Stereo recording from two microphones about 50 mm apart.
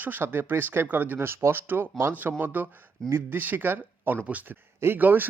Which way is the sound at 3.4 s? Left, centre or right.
Right.